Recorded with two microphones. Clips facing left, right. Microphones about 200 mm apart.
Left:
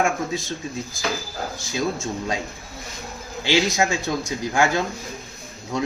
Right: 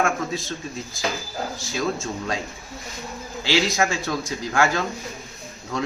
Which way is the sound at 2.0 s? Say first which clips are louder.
Left 1 dB; 15° left (ahead or behind).